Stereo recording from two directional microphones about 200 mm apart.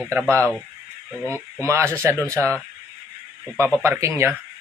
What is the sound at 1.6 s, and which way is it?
Speech, 15° right (ahead or behind).